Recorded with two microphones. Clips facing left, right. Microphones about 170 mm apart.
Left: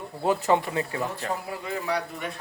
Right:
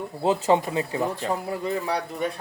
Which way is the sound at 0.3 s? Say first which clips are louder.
Right 2 dB; 20° right (ahead or behind).